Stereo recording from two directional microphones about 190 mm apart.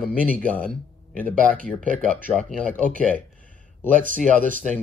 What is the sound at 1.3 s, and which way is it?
Speech, 45° right (ahead or behind).